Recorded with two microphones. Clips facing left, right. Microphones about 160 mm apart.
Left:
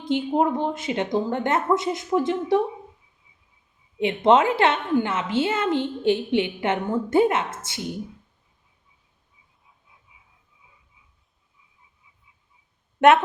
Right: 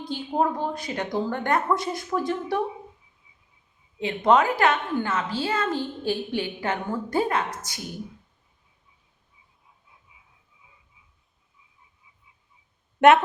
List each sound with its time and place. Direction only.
0.0 s a woman's voice: 20° left (ahead or behind)
4.0 s a woman's voice: 25° left (ahead or behind)
13.0 s speech: centre (ahead or behind)